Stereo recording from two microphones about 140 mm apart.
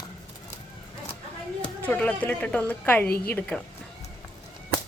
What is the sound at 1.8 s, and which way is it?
A woman's voice, 10° left (ahead or behind).